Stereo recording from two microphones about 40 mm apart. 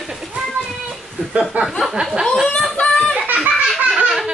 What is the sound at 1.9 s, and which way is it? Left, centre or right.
Chuckle, centre.